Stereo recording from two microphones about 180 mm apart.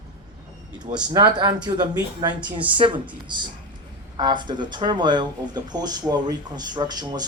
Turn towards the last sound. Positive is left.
turn(degrees=-20)  # may be behind; listen again after turning